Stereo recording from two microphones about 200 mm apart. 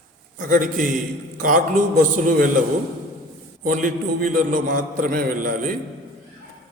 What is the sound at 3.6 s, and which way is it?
Mantra, 40° right (ahead or behind).